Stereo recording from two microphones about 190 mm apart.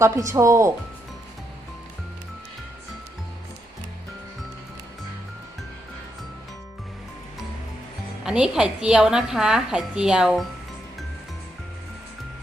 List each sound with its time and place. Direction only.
0.0 s speech: 15° right (ahead or behind)
8.2 s a woman's voice: 5° right (ahead or behind)